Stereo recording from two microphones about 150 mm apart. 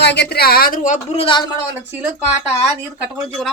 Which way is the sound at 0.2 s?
90° left.